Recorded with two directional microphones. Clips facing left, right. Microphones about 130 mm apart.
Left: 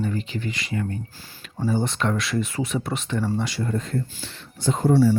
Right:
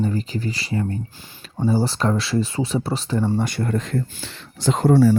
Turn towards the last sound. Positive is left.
turn(degrees=-85)